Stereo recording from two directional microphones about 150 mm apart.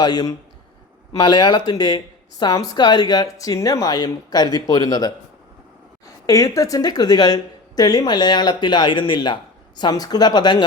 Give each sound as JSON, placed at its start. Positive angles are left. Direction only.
{"t": 0.0, "sound": "speech", "side_deg": 25}
{"t": 6.2, "sound": "speech", "side_deg": 20}